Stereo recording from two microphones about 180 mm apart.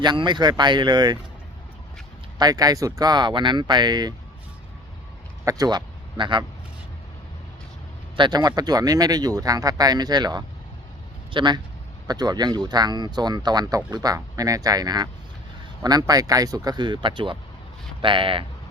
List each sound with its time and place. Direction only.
0.0 s speech: 25° right (ahead or behind)
2.4 s speech: 20° right (ahead or behind)
5.5 s speech: 20° right (ahead or behind)
8.1 s speech: 25° right (ahead or behind)